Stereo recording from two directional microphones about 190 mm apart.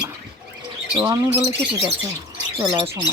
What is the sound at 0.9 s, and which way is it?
Speech, 15° right (ahead or behind).